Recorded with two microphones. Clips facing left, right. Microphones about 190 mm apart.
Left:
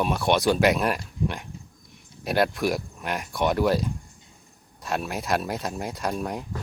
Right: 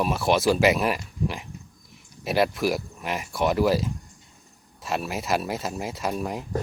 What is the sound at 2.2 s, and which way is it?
Speech, centre (ahead or behind).